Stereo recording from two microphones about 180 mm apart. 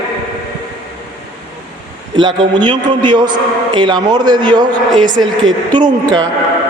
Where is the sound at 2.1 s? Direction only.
25° right (ahead or behind).